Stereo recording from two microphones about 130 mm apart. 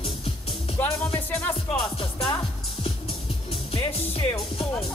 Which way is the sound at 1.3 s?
10° left (ahead or behind).